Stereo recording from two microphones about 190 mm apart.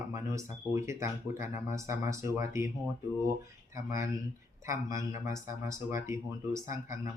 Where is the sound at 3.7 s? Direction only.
15° right (ahead or behind).